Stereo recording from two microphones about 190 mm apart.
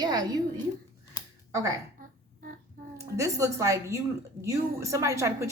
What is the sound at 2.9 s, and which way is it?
A woman's voice, 15° right (ahead or behind).